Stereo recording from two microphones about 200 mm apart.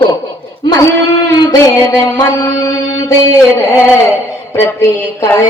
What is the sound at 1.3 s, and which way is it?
A woman's voice, 15° left (ahead or behind).